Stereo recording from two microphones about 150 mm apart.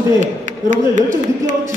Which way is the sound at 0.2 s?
55° right (ahead or behind).